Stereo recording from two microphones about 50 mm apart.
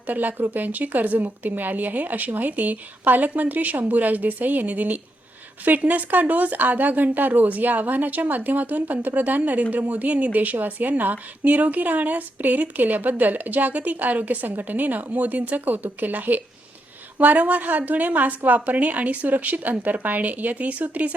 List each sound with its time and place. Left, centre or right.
0.1 s speech: right